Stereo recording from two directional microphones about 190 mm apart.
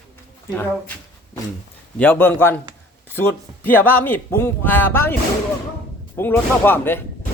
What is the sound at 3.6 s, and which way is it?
A man's voice, 10° left (ahead or behind).